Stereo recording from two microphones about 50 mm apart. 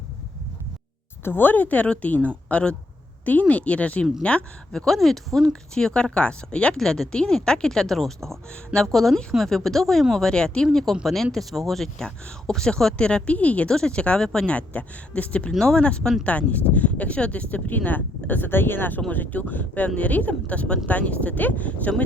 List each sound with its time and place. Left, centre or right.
1.2 s speech: left
4.7 s speech: centre
5.7 s speech: centre
6.7 s speech: centre
10.2 s speech: centre
10.7 s speech: centre; by 13.7 s left
13.7 s speech: centre
14.5 s speech: left